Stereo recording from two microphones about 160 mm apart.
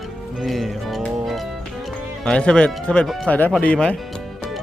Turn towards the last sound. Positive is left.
turn(degrees=5)  # may be behind; listen again after turning